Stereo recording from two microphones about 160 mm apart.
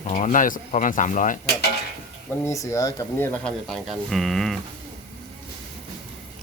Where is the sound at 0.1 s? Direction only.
55° left (ahead or behind).